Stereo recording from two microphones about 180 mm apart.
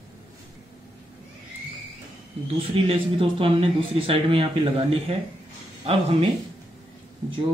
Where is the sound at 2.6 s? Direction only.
30° right (ahead or behind).